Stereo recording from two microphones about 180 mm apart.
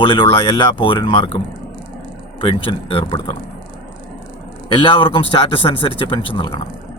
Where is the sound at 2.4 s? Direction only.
30° left (ahead or behind).